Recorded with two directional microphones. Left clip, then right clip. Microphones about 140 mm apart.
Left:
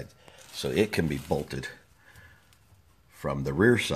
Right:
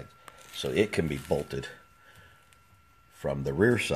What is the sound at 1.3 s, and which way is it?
Speech, 30° right (ahead or behind).